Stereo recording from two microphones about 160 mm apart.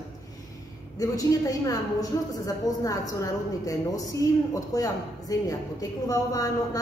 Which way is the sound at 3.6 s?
20° left (ahead or behind).